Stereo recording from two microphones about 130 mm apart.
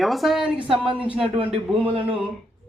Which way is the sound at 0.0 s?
Centre (ahead or behind).